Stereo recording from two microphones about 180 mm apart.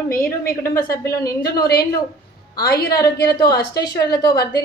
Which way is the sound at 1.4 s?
60° left (ahead or behind).